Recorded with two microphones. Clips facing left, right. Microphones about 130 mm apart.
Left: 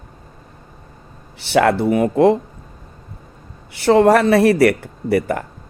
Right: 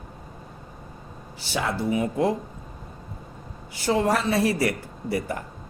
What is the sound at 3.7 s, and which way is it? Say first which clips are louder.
A man's voice: left 11 dB; 65° left (ahead or behind).